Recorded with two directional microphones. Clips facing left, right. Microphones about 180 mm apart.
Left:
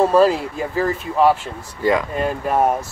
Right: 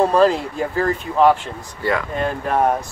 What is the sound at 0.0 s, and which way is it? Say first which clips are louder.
Speech: left 1 dB; 5° left (ahead or behind).